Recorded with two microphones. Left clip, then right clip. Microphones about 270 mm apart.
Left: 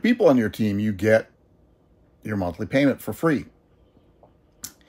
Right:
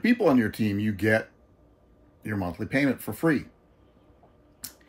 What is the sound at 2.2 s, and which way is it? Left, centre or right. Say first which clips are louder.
Speech: left 4 dB; centre.